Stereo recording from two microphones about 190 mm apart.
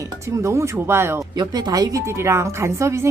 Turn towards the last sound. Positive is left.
turn(degrees=-15)  # may be behind; listen again after turning